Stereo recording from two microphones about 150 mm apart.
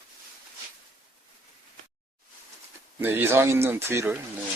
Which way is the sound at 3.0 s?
15° right (ahead or behind).